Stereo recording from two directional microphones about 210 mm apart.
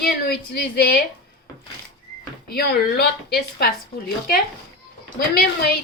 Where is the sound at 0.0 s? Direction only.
50° left (ahead or behind).